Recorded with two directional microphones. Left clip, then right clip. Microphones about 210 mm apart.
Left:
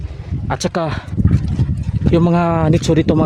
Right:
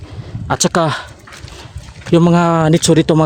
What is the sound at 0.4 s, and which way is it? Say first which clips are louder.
Speech: right 5 dB; 20° right (ahead or behind).